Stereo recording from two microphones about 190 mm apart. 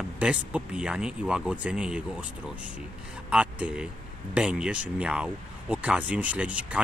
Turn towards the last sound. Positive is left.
turn(degrees=-5)  # may be behind; listen again after turning